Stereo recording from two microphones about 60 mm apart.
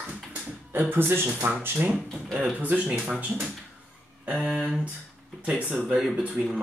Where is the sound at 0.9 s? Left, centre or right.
Right.